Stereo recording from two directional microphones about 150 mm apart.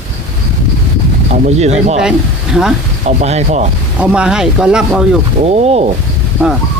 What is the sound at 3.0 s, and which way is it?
Speech, 45° right (ahead or behind).